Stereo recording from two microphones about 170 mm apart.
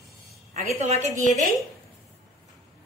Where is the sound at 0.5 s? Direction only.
40° right (ahead or behind).